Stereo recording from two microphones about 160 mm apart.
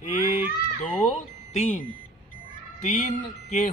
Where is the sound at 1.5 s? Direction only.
45° left (ahead or behind).